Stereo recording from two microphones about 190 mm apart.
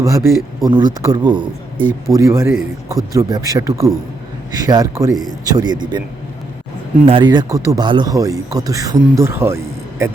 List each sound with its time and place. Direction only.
0.0 s speech: 15° right (ahead or behind)
7.0 s speech: 25° right (ahead or behind)